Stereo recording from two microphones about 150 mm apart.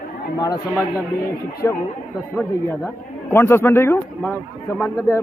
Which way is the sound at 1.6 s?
15° left (ahead or behind).